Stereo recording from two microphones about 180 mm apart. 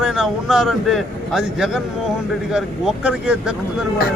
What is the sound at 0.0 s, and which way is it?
A man's voice, 5° right (ahead or behind).